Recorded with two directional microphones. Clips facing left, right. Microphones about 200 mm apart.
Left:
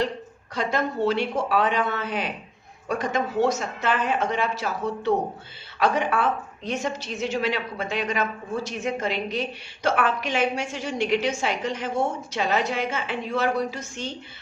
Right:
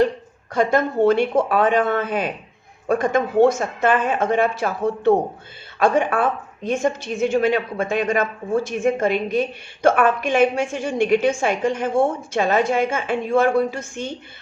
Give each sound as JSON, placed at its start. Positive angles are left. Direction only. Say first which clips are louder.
{"t": 0.5, "sound": "a woman's voice", "louder": "right 7 dB", "side_deg": -50}